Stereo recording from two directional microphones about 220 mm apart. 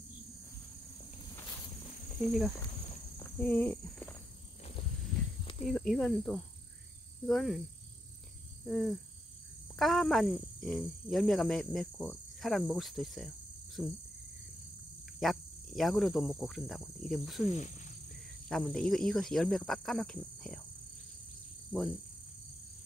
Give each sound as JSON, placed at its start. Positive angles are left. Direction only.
{"t": 3.2, "sound": "walk", "side_deg": 10}
{"t": 5.7, "sound": "speech", "side_deg": 0}
{"t": 8.6, "sound": "a sound", "side_deg": 0}
{"t": 9.8, "sound": "speech", "side_deg": 0}
{"t": 15.1, "sound": "speech", "side_deg": 0}
{"t": 17.5, "sound": "speech", "side_deg": 30}
{"t": 18.1, "sound": "speech", "side_deg": 0}